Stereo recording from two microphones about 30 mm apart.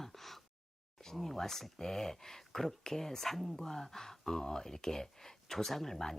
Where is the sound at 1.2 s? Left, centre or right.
Centre.